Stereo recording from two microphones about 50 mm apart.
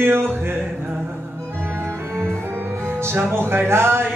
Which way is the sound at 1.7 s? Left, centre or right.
Right.